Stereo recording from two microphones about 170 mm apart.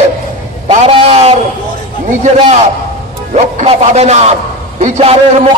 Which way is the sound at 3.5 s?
40° right (ahead or behind).